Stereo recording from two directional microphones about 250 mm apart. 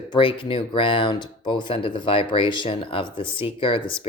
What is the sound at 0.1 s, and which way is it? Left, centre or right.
Speech, centre.